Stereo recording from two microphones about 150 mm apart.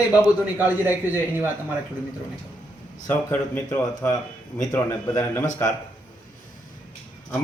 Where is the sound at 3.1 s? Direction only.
15° left (ahead or behind).